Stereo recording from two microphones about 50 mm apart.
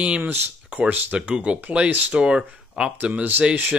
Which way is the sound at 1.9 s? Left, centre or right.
Right.